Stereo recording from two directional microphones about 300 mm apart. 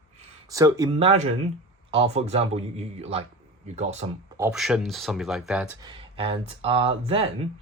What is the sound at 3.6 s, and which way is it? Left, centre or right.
Speech, right.